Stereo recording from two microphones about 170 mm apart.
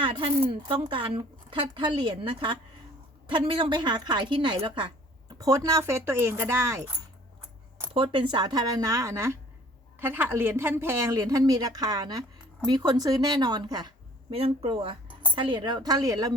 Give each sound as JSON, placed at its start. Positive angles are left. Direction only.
{"t": 0.0, "sound": "a woman's voice", "side_deg": -30}
{"t": 7.9, "sound": "a woman's voice", "side_deg": -30}